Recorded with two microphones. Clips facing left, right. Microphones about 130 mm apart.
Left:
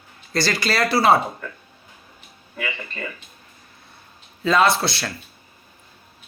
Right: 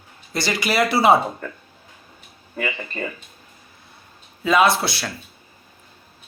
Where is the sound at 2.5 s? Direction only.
40° right (ahead or behind).